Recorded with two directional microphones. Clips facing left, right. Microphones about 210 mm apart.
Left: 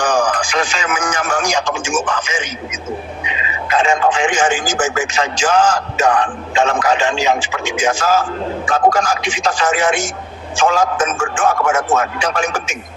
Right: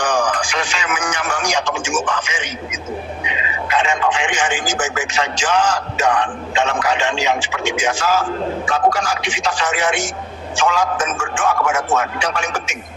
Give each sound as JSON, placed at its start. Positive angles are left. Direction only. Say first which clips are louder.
{"t": 0.0, "sound": "a man's voice", "louder": "left 2 dB", "side_deg": 45}
{"t": 3.7, "sound": "speech", "louder": "left 4 dB", "side_deg": 45}